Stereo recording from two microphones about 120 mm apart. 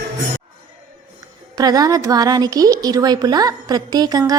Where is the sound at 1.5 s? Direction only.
30° right (ahead or behind).